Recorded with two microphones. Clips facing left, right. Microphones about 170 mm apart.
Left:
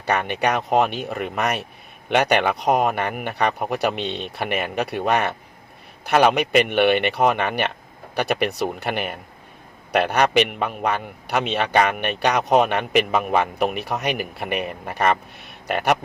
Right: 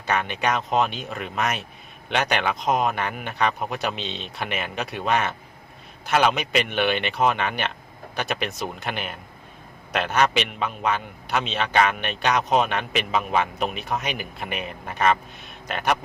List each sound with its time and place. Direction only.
0.0 s a man's voice: 65° left (ahead or behind)